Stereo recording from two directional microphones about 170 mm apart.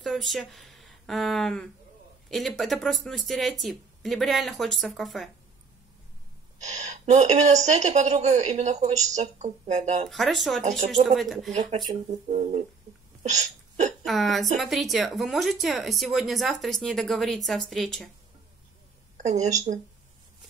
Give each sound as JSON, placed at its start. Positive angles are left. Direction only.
{"t": 0.0, "sound": "speech", "side_deg": 0}
{"t": 6.6, "sound": "speech", "side_deg": -45}
{"t": 10.0, "sound": "speech", "side_deg": 0}
{"t": 11.5, "sound": "speech", "side_deg": -40}
{"t": 13.2, "sound": "hiccup", "side_deg": -45}
{"t": 14.0, "sound": "speech", "side_deg": 0}
{"t": 19.1, "sound": "speech", "side_deg": -45}